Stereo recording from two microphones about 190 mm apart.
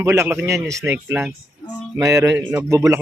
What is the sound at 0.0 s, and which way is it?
A man's voice, 15° right (ahead or behind).